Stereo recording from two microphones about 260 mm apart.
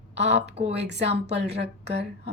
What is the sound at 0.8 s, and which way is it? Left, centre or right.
Speech, right.